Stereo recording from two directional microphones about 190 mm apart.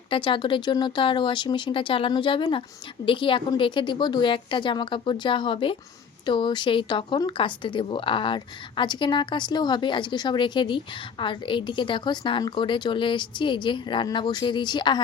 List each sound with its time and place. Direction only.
0.1 s speech: 25° left (ahead or behind)